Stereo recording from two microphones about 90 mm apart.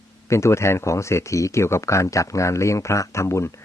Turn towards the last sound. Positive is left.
turn(degrees=30)  # may be behind; listen again after turning